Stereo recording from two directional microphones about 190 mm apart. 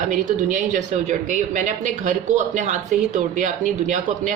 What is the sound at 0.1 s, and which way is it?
Speech, 45° right (ahead or behind).